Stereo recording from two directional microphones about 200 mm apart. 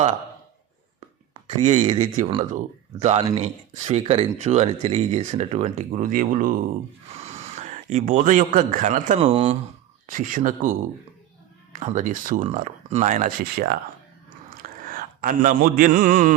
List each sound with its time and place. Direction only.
1.3 s speech: 35° right (ahead or behind)
10.1 s speech: 40° right (ahead or behind)
11.9 s speech: 40° right (ahead or behind)
14.8 s a man's voice: 45° right (ahead or behind)